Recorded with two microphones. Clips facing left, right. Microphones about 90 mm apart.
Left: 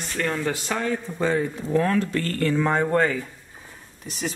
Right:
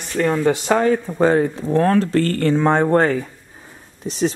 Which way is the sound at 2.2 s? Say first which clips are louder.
Right 6 dB; 55° right (ahead or behind).